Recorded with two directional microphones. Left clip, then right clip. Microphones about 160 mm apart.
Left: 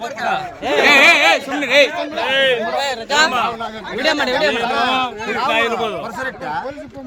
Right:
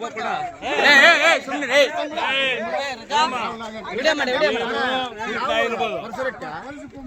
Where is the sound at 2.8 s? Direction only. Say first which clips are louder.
Left 5 dB; 90° left.